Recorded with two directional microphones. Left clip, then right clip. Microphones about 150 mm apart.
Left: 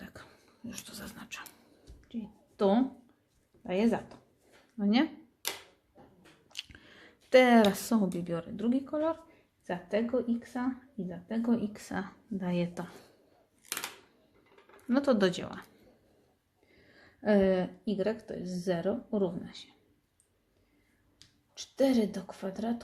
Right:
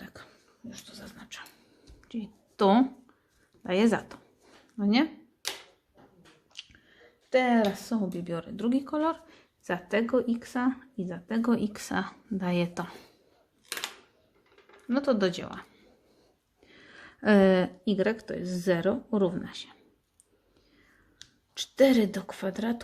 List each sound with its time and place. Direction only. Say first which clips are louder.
0.0 s a sound: right 2 dB; centre (ahead or behind)
0.9 s dog: left 1 dB; 20° left (ahead or behind)
2.1 s a woman's voice: right 4 dB; 30° right (ahead or behind)
4.8 s speech: right 3 dB; 15° right (ahead or behind)
6.5 s chewing: left 3 dB; 25° left (ahead or behind)
7.7 s speech: left 1 dB; 25° left (ahead or behind)
8.1 s speech: right 1 dB; centre (ahead or behind); by 9.1 s 30° right (ahead or behind)
9.6 s speech: right 4 dB; 40° right (ahead or behind)
14.8 s speech: right 1 dB; 5° left (ahead or behind)
15.4 s speech: right 2 dB; 10° right (ahead or behind)
16.9 s a woman's voice: right 4 dB; 45° right (ahead or behind)
21.8 s a woman's voice: right 6 dB; 45° right (ahead or behind)